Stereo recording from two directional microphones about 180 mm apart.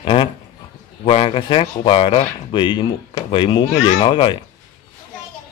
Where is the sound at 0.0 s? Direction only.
30° left (ahead or behind).